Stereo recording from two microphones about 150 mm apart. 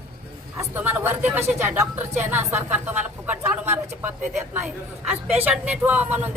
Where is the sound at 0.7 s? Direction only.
15° right (ahead or behind).